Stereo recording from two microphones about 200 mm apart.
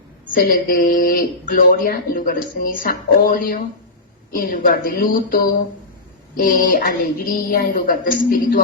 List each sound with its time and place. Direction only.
0.3 s a woman's voice: 45° left (ahead or behind)